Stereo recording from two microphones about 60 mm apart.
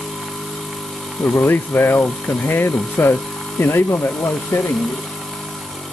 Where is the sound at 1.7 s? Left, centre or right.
Left.